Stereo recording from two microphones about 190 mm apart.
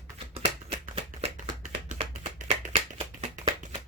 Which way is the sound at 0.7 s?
30° right (ahead or behind).